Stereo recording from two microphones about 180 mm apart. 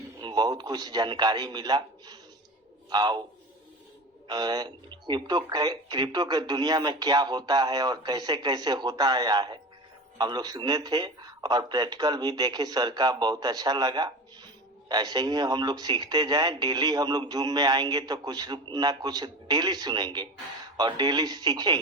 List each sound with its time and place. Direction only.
0.2 s speech: 25° right (ahead or behind)
4.3 s speech: 25° right (ahead or behind)